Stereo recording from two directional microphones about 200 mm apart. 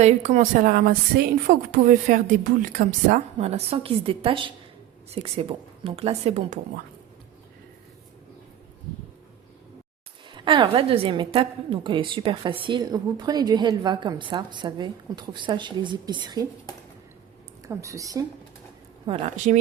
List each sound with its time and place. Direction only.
0.0 s a woman's voice: 35° right (ahead or behind)
10.2 s a woman's voice: 25° right (ahead or behind)
17.7 s speech: 15° right (ahead or behind)
19.0 s a woman's voice: 25° right (ahead or behind)